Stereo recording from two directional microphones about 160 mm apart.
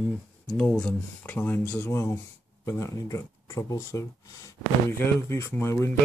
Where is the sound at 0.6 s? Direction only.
5° left (ahead or behind).